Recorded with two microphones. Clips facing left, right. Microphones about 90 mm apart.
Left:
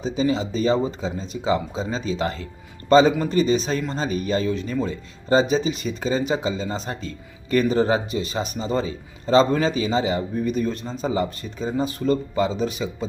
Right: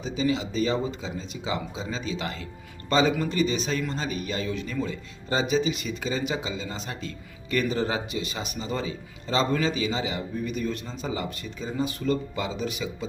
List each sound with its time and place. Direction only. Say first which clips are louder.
0.0 s speech: left 4 dB; 35° left (ahead or behind)